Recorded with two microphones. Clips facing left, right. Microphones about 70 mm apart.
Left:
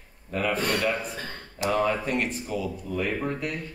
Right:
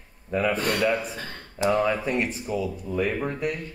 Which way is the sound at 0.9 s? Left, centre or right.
Centre.